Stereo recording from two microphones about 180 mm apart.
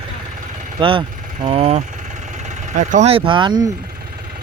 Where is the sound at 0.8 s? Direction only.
30° right (ahead or behind).